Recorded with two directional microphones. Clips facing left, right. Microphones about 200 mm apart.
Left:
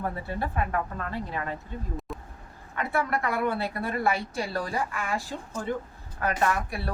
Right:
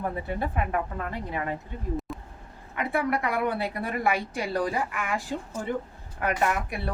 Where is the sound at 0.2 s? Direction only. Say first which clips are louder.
Right 1 dB; 20° right (ahead or behind).